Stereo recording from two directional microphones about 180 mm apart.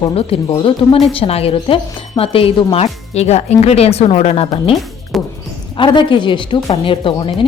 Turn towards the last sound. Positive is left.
turn(degrees=30)  # may be behind; listen again after turning